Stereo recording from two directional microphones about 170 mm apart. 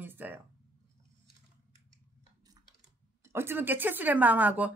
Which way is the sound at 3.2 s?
15° right (ahead or behind).